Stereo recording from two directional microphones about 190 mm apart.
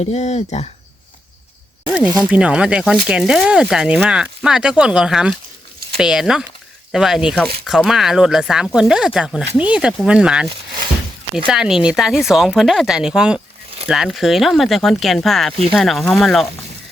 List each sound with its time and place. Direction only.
0.0 s speech: 35° left (ahead or behind)
1.9 s speech: 5° right (ahead or behind)